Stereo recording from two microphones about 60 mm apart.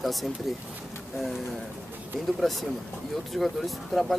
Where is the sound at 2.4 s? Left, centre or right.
Centre.